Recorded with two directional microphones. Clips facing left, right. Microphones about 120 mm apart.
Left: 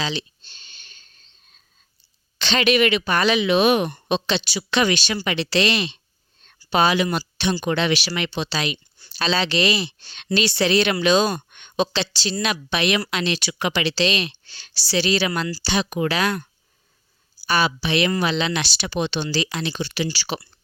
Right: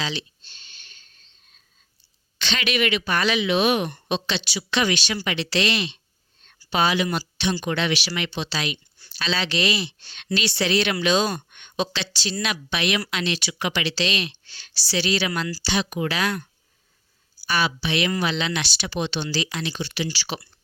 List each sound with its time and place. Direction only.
0.0 s a sound: 30° left (ahead or behind)
2.4 s speech: 30° left (ahead or behind)
3.4 s speech: 40° left (ahead or behind)
7.6 s speech: 35° left (ahead or behind)
11.0 s speech: 45° left (ahead or behind)
15.7 s speech: 45° left (ahead or behind)
17.5 s speech: 35° left (ahead or behind)
18.9 s speech: 50° left (ahead or behind)